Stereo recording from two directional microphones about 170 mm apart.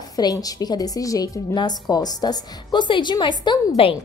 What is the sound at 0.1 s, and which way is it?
A woman's voice, 20° left (ahead or behind).